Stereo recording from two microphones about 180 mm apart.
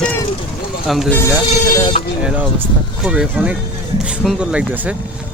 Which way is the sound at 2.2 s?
5° right (ahead or behind).